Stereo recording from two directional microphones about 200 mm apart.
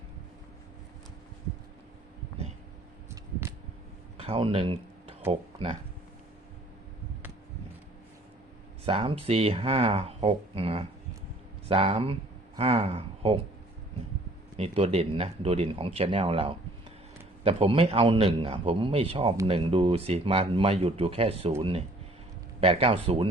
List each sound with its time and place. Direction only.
4.2 s a sound: 30° right (ahead or behind)
5.3 s speech: 30° right (ahead or behind)
8.8 s speech: 30° right (ahead or behind)
14.5 s speech: 30° right (ahead or behind)